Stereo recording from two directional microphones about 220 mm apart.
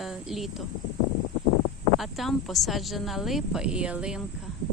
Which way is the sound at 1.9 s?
Centre (ahead or behind).